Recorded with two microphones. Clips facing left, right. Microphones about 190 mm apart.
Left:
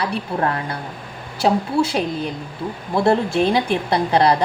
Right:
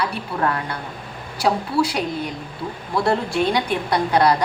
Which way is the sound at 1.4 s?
25° left (ahead or behind).